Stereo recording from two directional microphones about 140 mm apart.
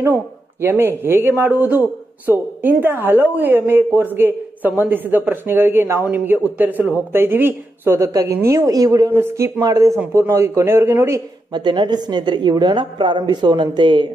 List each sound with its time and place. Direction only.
0.0 s speech: 15° right (ahead or behind)
11.5 s a woman's voice: 35° right (ahead or behind)